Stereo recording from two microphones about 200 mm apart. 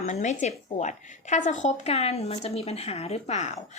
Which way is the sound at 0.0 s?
35° left (ahead or behind).